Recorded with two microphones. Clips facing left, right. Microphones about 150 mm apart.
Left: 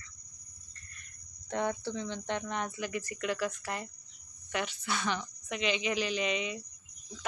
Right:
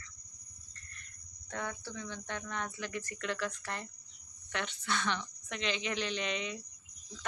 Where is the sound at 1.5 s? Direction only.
25° left (ahead or behind); by 6.6 s 5° left (ahead or behind).